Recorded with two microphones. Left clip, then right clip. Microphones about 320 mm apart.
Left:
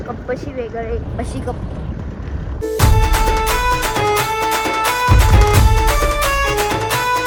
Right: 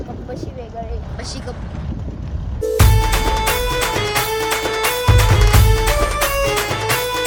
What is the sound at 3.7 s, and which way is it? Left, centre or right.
Music, centre.